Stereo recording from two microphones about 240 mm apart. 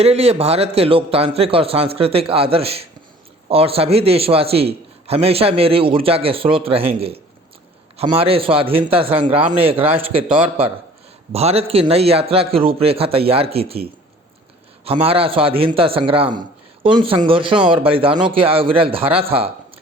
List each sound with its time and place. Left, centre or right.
0.0 s a man's voice: right